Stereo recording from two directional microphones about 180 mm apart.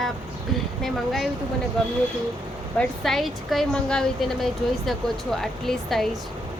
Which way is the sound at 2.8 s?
Centre (ahead or behind).